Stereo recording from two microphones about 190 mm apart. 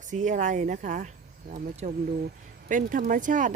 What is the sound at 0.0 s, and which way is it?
Speech, 40° right (ahead or behind).